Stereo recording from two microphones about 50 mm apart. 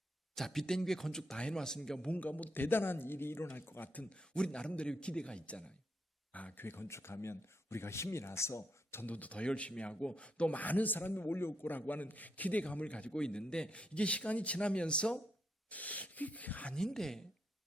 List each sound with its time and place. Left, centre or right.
0.3 s speech: centre
2.0 s speech: left
3.9 s a man's voice: left
6.6 s speech: left
9.0 s a man's voice: left
15.7 s speech: left
16.7 s speech: centre